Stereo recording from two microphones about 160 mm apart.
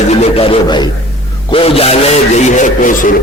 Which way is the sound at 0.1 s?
40° left (ahead or behind).